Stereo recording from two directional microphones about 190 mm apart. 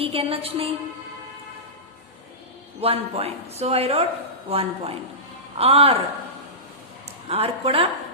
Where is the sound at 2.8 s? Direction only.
30° right (ahead or behind).